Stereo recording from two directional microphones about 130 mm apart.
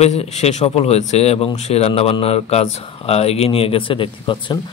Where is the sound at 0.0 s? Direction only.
55° left (ahead or behind).